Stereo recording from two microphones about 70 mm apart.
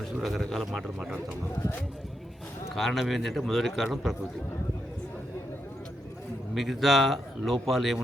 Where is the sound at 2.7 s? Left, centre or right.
Centre.